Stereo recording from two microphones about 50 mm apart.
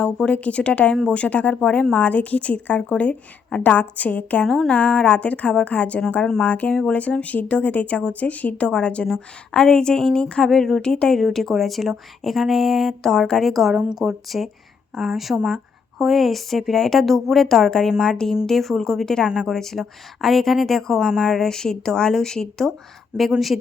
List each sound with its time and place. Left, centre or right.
0.3 s speech: left
4.4 s speech: centre
4.7 s speech: left
6.4 s speech: left
6.9 s speech: left; by 10.8 s centre
10.8 s speech: centre
11.2 s a woman's voice: centre
13.5 s a woman's voice: centre
23.1 s speech: centre